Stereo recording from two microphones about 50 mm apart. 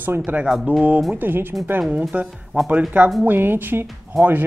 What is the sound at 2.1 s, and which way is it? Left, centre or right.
Speech, right.